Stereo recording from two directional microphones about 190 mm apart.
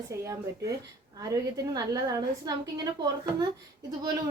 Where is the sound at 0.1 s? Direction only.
15° right (ahead or behind).